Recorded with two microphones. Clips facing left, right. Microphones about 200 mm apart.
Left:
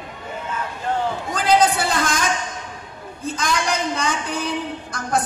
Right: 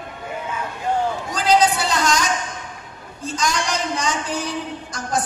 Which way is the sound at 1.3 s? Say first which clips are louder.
Even; 55° left (ahead or behind).